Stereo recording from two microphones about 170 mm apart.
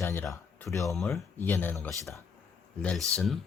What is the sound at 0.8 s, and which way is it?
Speech, centre (ahead or behind).